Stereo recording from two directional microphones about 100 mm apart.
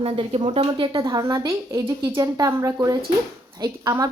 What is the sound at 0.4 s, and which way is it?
Speech, 75° right (ahead or behind).